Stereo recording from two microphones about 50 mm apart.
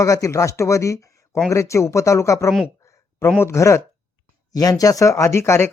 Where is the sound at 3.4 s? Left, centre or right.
Left.